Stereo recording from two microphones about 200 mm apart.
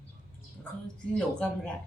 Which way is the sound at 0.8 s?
5° left (ahead or behind).